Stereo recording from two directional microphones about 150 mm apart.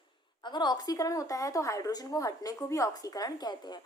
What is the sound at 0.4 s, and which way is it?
A woman's voice, 30° left (ahead or behind).